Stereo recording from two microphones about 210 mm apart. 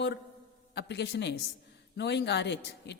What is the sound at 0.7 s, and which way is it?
A man's voice, 55° left (ahead or behind).